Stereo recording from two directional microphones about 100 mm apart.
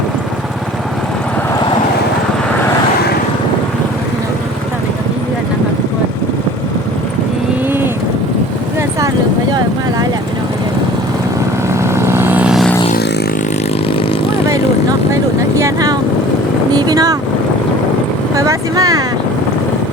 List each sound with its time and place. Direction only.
11.7 s vehicle: 25° right (ahead or behind)
15.1 s vehicle: 30° right (ahead or behind)
16.7 s boat: 40° right (ahead or behind)
18.3 s vehicle: 35° right (ahead or behind)